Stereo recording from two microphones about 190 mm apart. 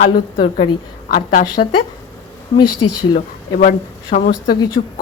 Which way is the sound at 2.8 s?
90° left.